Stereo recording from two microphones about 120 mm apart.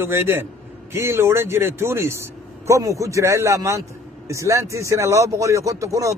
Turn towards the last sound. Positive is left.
turn(degrees=-25)  # may be behind; listen again after turning